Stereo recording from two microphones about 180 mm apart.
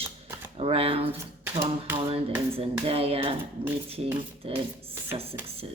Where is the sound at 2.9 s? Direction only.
35° right (ahead or behind).